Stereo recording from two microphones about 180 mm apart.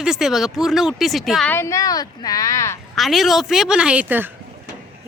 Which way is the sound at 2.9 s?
Centre (ahead or behind).